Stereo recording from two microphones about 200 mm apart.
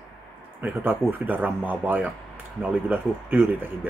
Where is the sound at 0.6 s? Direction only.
10° right (ahead or behind).